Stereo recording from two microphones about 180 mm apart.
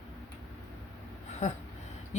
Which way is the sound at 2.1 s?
40° left (ahead or behind).